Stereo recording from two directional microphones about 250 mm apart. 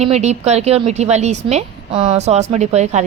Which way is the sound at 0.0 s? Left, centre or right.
Right.